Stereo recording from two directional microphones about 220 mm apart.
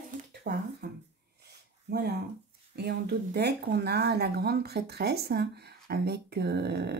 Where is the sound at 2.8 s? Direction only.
50° right (ahead or behind).